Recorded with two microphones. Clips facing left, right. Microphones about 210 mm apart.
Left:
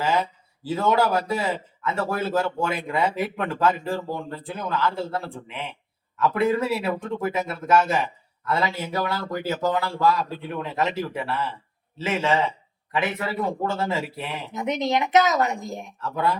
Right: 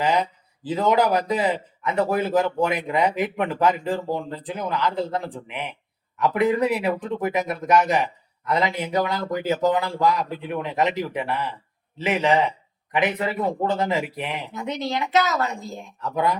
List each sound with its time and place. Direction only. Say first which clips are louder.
0.0 s speech: right 2 dB; 15° right (ahead or behind)
14.5 s a woman's voice: left 6 dB; 20° left (ahead or behind)
16.0 s speech: right 2 dB; 15° right (ahead or behind)